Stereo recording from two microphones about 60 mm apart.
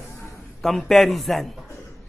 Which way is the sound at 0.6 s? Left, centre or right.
Centre.